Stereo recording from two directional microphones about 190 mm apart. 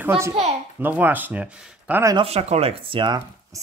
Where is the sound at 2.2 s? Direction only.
35° right (ahead or behind).